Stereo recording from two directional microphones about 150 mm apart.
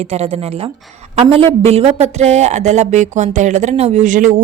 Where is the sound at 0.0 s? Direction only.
40° right (ahead or behind).